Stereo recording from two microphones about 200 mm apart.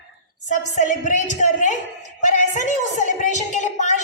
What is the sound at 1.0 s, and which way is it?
A woman's voice, 40° left (ahead or behind).